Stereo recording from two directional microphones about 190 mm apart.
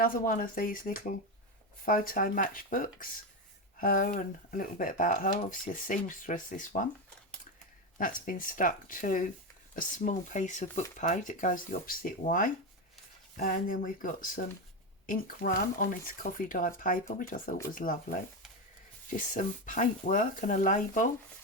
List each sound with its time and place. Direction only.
0.0 s speech: 45° left (ahead or behind)
7.9 s speech: 45° left (ahead or behind)